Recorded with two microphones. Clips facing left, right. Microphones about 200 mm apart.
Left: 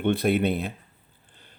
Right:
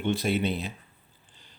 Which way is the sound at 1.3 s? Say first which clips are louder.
Left 4 dB; 55° left (ahead or behind).